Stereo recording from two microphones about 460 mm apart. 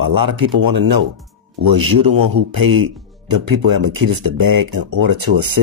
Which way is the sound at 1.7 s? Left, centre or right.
Right.